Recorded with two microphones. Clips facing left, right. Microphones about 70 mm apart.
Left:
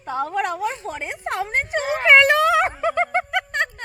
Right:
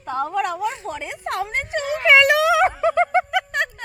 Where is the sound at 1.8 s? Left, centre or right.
Left.